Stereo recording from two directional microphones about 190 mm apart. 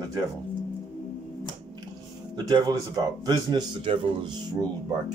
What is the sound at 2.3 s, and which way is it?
Speech, 20° right (ahead or behind).